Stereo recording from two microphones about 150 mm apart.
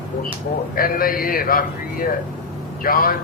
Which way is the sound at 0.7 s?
75° left (ahead or behind).